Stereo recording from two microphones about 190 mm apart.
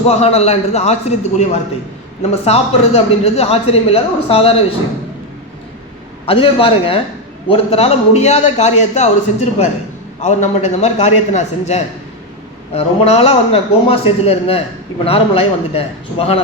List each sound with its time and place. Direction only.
0.1 s a man's voice: 35° left (ahead or behind)
6.2 s a man's voice: 30° left (ahead or behind)
10.8 s a man's voice: 35° left (ahead or behind)